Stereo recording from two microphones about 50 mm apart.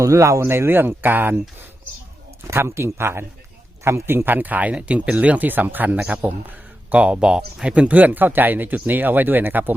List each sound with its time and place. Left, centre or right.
0.0 s speech: right
0.4 s speech: right
2.5 s speech: right
7.0 s speech: right